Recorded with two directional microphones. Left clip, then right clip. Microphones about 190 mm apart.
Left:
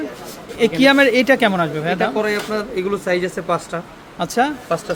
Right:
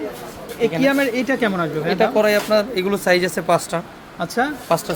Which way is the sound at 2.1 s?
45° right (ahead or behind).